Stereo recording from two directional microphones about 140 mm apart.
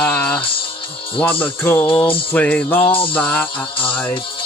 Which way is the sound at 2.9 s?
40° left (ahead or behind).